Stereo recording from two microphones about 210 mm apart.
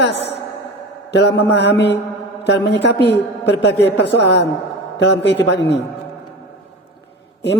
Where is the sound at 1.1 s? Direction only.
55° left (ahead or behind).